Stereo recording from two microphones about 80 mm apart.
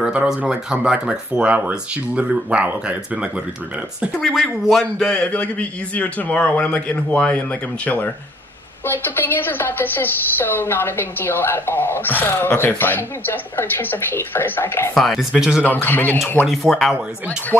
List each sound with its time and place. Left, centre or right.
0.0 s speech: centre
4.2 s a man's voice: centre
5.2 s a woman's voice: centre
15.0 s a man's voice: centre
15.6 s a woman's voice: left
16.4 s a man's voice: centre